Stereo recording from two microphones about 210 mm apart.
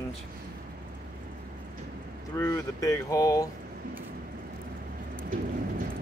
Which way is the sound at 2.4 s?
15° left (ahead or behind).